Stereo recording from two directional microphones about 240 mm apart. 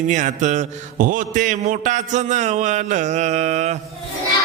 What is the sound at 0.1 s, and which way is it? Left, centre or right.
A man's voice, right.